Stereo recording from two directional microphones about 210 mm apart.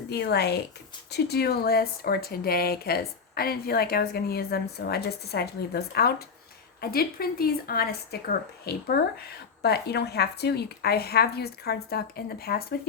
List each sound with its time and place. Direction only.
0.1 s speech: 50° left (ahead or behind)